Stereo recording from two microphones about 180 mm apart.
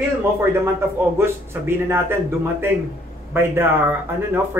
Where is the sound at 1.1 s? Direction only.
15° right (ahead or behind).